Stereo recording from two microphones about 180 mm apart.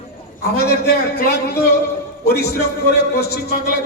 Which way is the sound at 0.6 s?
60° left (ahead or behind).